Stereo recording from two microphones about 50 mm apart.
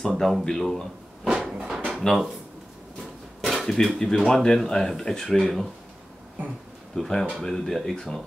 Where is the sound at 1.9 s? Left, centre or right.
Centre.